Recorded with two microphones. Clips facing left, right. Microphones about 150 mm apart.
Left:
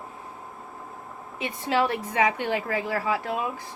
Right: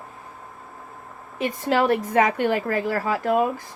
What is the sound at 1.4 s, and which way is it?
A woman's voice, 45° right (ahead or behind).